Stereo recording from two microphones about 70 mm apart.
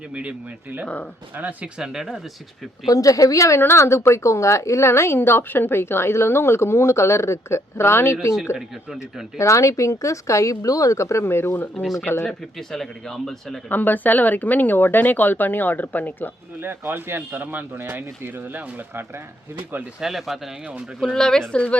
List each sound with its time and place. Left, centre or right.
0.1 s speech: centre
1.8 s speech: centre
2.8 s a woman's voice: left
9.4 s speech: left
11.7 s speech: centre
13.7 s speech: left
16.6 s speech: right
20.0 s speech: centre
21.0 s speech: centre